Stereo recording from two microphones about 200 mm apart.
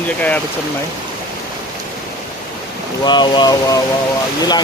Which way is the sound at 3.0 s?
20° left (ahead or behind).